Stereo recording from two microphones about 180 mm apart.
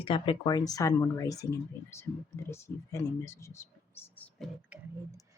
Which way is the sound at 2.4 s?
15° left (ahead or behind).